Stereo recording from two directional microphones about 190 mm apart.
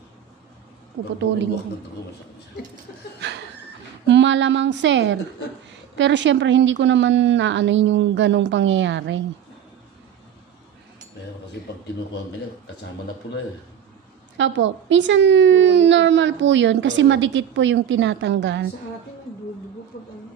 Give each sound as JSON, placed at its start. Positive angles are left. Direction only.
{"t": 1.0, "sound": "a woman's voice", "side_deg": -80}
{"t": 4.1, "sound": "a woman's voice", "side_deg": -70}
{"t": 14.3, "sound": "a woman's voice", "side_deg": -75}